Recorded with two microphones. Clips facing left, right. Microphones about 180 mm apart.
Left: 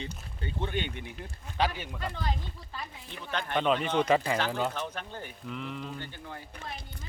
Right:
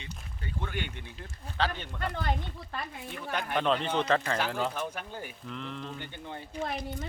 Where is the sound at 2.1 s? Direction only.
60° right (ahead or behind).